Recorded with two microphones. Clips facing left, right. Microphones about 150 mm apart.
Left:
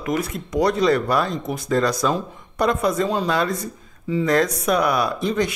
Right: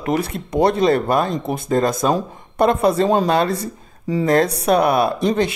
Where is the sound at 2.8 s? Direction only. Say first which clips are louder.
Right 5 dB; 30° right (ahead or behind).